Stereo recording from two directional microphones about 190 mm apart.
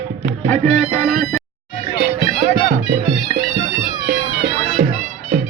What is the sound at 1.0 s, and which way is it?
Music, 5° left (ahead or behind).